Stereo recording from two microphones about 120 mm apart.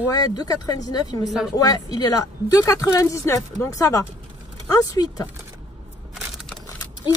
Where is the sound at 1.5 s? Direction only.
30° left (ahead or behind).